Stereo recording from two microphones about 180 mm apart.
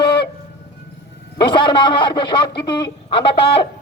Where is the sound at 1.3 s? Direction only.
25° left (ahead or behind).